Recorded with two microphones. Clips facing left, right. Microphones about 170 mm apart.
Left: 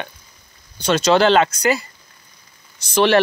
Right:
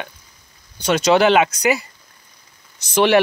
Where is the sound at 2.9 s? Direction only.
15° right (ahead or behind).